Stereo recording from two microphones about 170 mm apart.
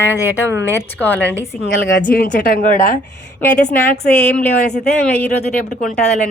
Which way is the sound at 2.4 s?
55° left (ahead or behind).